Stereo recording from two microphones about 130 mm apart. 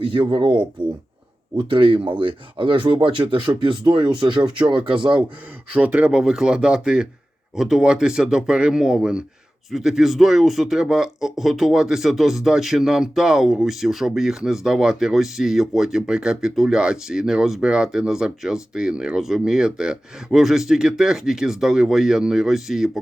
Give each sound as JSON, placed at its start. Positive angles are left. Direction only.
{"t": 0.0, "sound": "speech", "side_deg": -40}
{"t": 5.7, "sound": "speech", "side_deg": -10}